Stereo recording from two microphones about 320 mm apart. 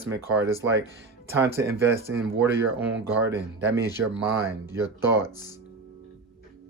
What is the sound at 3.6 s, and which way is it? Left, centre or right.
Speech, centre.